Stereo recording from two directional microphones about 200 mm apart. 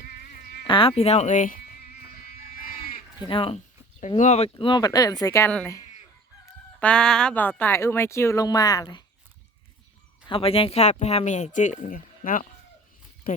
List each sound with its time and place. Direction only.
0.7 s a sound: 25° left (ahead or behind); by 2.9 s 45° left (ahead or behind)
3.2 s speech: 25° left (ahead or behind)
10.2 s speech: 30° left (ahead or behind); by 13.4 s 45° left (ahead or behind)